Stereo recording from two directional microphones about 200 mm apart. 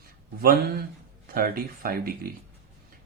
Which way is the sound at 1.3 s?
45° right (ahead or behind).